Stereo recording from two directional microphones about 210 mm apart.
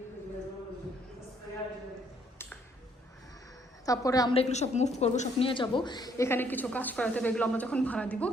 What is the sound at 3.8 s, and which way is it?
Speech, 15° left (ahead or behind).